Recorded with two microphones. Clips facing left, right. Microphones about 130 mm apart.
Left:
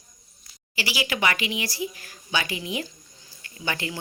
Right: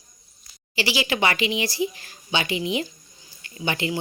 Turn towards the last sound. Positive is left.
turn(degrees=-20)  # may be behind; listen again after turning